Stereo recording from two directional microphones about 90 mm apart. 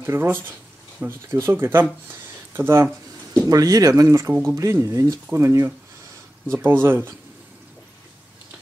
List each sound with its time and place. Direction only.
0.0 s speech: 25° right (ahead or behind)
2.0 s a sound: 25° right (ahead or behind)
3.4 s speech: 45° right (ahead or behind)
4.0 s speech: 30° right (ahead or behind)